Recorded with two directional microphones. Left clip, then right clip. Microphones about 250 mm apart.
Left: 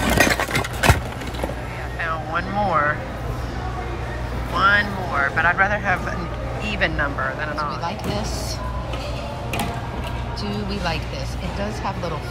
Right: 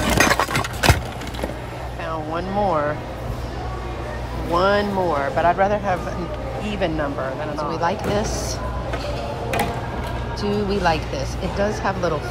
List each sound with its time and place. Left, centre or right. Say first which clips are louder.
0.0 s engine: right 1 dB; centre
2.0 s speech: left 1 dB; centre
4.6 s speech: left 1 dB; right
10.4 s speech: right 7 dB; centre